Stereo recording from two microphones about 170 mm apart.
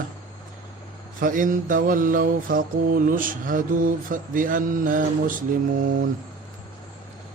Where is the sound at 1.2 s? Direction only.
55° right (ahead or behind).